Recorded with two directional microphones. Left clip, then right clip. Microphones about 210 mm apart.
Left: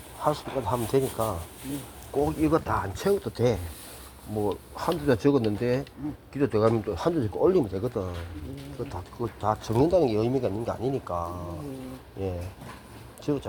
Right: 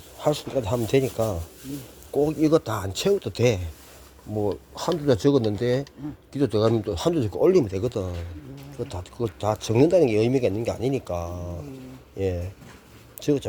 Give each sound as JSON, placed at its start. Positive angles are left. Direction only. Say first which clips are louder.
{"t": 0.2, "sound": "speech", "louder": "right 3 dB", "side_deg": -50}